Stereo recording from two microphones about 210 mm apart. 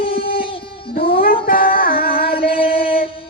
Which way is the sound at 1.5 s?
45° left (ahead or behind).